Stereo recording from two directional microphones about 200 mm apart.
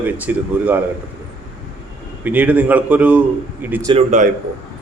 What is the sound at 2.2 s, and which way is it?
A man's voice, 10° right (ahead or behind).